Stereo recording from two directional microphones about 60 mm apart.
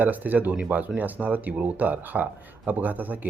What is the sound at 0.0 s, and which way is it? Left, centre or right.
Speech, right.